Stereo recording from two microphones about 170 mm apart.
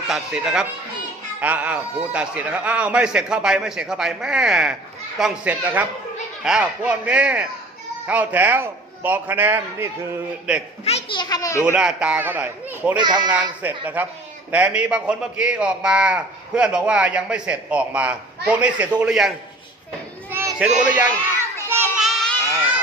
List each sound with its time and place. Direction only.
0.1 s a man's voice: 5° right (ahead or behind)
10.8 s a child's voice: 40° left (ahead or behind)
11.2 s a child's voice: 20° left (ahead or behind)
11.6 s a man's voice: 5° right (ahead or behind)
13.0 s speech: 25° right (ahead or behind)
13.6 s a man's voice: 10° right (ahead or behind)
20.3 s a sound: 15° right (ahead or behind)
20.7 s a man's voice: 10° right (ahead or behind)
21.9 s child singing: centre (ahead or behind)